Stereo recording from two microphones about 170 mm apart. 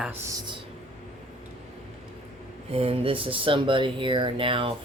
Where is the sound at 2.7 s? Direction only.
35° right (ahead or behind).